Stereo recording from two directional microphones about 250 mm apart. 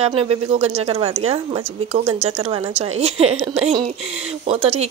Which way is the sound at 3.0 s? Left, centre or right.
Right.